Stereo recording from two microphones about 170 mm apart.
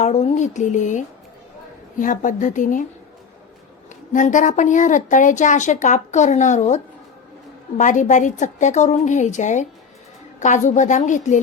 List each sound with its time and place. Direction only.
0.0 s a woman's voice: 40° left (ahead or behind)
4.1 s a woman's voice: 50° left (ahead or behind)